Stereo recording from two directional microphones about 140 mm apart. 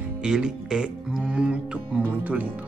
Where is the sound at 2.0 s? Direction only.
10° right (ahead or behind).